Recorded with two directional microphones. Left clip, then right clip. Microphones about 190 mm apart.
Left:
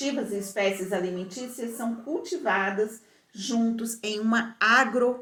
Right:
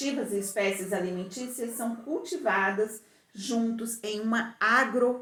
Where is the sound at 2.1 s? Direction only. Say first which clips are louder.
Left 2 dB; 20° left (ahead or behind).